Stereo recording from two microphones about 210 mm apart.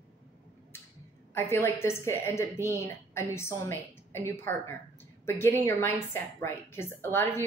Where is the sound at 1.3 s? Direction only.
10° left (ahead or behind).